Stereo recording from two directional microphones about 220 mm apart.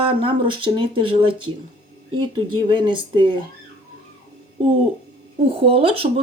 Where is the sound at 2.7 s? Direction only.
20° right (ahead or behind).